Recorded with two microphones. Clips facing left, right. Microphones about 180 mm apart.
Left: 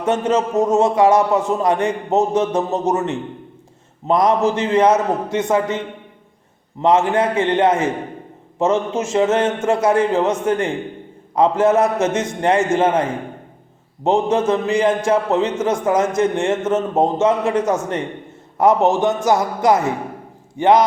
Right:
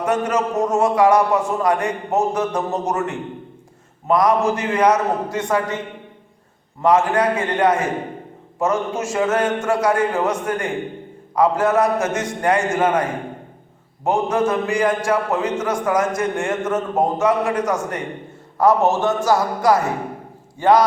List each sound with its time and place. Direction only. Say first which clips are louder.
0.0 s a man's voice: left 2 dB; 25° left (ahead or behind)
6.8 s a man's voice: left 1 dB; 25° left (ahead or behind)